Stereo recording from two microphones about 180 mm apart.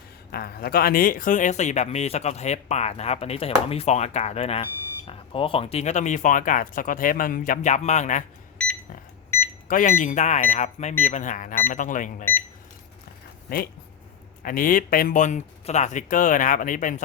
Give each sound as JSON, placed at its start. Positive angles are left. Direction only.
{"t": 0.3, "sound": "speech", "side_deg": 60}
{"t": 8.6, "sound": "a sound", "side_deg": 5}
{"t": 9.3, "sound": "microwave oven", "side_deg": 10}
{"t": 9.6, "sound": "speech", "side_deg": 50}
{"t": 14.4, "sound": "speech", "side_deg": 50}